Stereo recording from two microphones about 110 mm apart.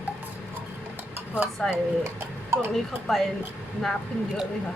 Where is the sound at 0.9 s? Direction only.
20° right (ahead or behind).